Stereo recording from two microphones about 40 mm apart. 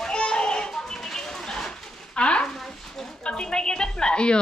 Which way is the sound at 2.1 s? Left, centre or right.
Left.